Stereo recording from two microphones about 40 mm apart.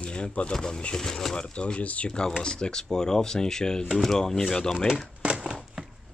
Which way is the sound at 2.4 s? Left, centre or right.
Centre.